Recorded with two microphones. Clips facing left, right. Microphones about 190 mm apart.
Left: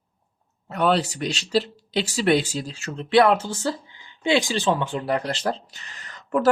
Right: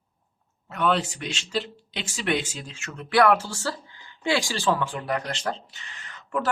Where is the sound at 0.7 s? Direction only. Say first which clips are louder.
Left 3 dB; 35° left (ahead or behind).